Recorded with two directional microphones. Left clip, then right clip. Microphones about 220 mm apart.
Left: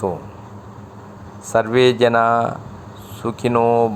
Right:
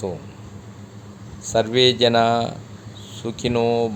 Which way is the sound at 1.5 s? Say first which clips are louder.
Left 2 dB; centre (ahead or behind).